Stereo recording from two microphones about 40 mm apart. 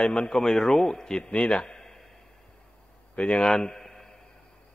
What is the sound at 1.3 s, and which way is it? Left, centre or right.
Speech, left.